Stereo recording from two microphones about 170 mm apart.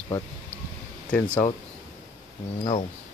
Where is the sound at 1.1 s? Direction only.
10° left (ahead or behind).